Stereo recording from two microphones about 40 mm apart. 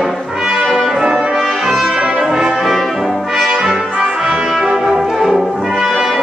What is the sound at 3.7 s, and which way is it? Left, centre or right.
Brass instrument, centre.